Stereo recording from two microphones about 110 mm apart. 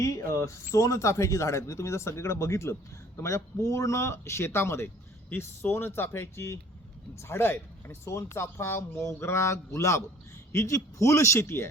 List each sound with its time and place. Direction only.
0.0 s speech: 30° left (ahead or behind)